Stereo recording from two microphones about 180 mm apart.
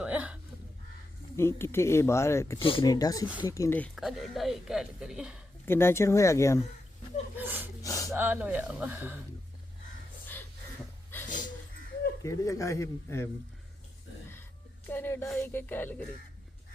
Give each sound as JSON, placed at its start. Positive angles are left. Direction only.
{"t": 0.0, "sound": "a sound", "side_deg": -5}
{"t": 1.4, "sound": "speech", "side_deg": 15}
{"t": 2.6, "sound": "speech", "side_deg": 30}
{"t": 3.2, "sound": "speech", "side_deg": -10}
{"t": 3.5, "sound": "speech", "side_deg": 15}
{"t": 3.9, "sound": "speech", "side_deg": 0}
{"t": 5.6, "sound": "speech", "side_deg": 15}
{"t": 7.3, "sound": "gasp", "side_deg": -10}
{"t": 7.8, "sound": "gasp", "side_deg": 20}
{"t": 8.1, "sound": "speech", "side_deg": -10}
{"t": 11.3, "sound": "a sound", "side_deg": 45}
{"t": 12.2, "sound": "speech", "side_deg": 15}
{"t": 14.8, "sound": "music", "side_deg": 10}
{"t": 15.4, "sound": "speech", "side_deg": 10}